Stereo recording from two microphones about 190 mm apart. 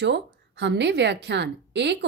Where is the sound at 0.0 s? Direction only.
65° right (ahead or behind).